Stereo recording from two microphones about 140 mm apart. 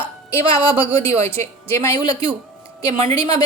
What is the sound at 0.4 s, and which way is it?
Speech, 40° right (ahead or behind).